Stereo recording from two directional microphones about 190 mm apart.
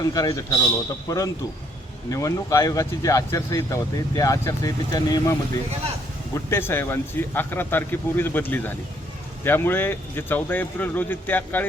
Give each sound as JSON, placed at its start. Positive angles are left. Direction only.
{"t": 0.0, "sound": "a man's voice", "side_deg": 20}